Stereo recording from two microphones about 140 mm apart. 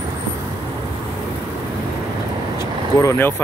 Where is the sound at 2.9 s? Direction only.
20° left (ahead or behind).